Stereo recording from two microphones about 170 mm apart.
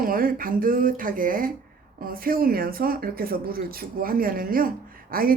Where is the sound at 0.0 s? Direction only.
55° right (ahead or behind).